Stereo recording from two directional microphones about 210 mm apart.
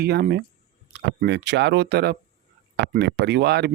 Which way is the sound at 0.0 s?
50° right (ahead or behind).